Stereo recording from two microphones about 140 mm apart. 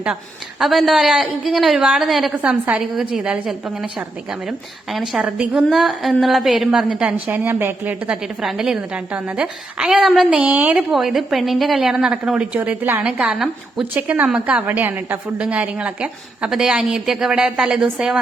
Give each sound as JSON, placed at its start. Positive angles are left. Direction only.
{"t": 0.6, "sound": "a woman's voice", "side_deg": 0}